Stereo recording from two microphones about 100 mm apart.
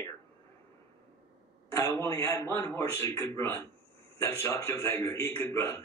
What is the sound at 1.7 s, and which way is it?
A man's voice, 30° left (ahead or behind).